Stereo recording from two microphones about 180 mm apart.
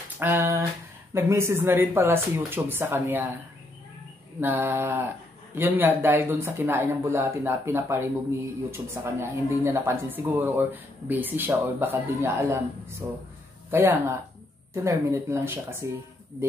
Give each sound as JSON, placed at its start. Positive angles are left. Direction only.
{"t": 0.2, "sound": "speech", "side_deg": -15}
{"t": 4.4, "sound": "speech", "side_deg": -10}